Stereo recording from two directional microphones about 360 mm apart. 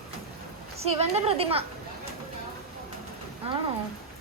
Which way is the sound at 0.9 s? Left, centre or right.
Centre.